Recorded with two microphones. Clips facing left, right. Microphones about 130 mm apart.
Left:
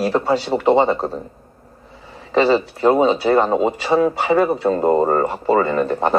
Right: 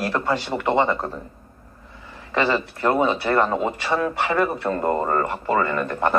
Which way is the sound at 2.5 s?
15° left (ahead or behind).